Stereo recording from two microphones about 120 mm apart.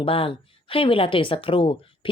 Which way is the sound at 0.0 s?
50° left (ahead or behind).